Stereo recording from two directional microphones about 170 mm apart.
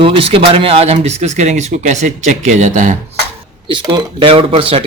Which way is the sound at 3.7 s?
25° right (ahead or behind).